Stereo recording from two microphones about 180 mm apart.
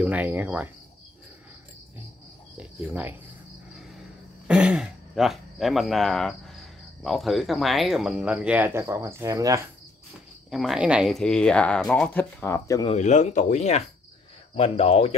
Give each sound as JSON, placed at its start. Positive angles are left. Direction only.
{"t": 0.0, "sound": "cricket", "side_deg": -10}
{"t": 2.5, "sound": "speech", "side_deg": -10}
{"t": 4.5, "sound": "speech", "side_deg": -5}
{"t": 10.5, "sound": "speech", "side_deg": 0}
{"t": 12.8, "sound": "speech", "side_deg": 40}